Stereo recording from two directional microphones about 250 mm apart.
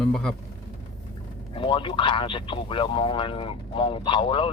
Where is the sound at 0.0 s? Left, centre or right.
Centre.